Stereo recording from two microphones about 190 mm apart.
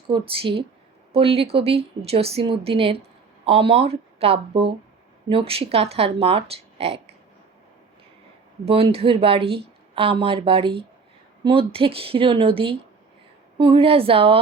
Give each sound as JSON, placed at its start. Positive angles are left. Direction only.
{"t": 0.1, "sound": "a woman's voice", "side_deg": -30}
{"t": 8.6, "sound": "speech", "side_deg": -30}